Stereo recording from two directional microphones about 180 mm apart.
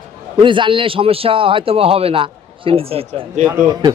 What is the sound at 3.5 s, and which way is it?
Speech, 20° right (ahead or behind).